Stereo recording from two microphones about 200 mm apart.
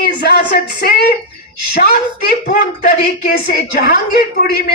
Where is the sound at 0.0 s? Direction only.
50° left (ahead or behind).